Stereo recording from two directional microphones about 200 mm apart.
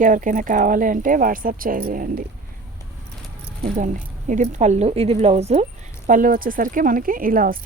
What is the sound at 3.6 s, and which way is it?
Speech, 40° right (ahead or behind).